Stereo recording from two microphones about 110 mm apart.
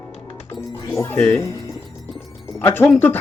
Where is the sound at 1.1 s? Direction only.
15° left (ahead or behind).